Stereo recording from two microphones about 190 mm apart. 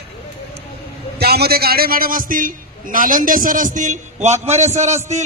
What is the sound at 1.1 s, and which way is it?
A man's voice, 55° right (ahead or behind).